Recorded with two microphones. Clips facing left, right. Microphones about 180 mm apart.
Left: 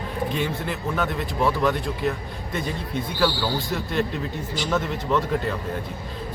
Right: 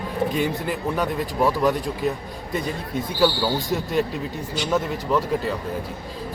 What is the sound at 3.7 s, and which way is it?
A man's voice, 10° right (ahead or behind).